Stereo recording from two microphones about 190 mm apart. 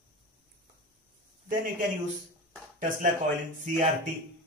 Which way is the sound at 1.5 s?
45° right (ahead or behind).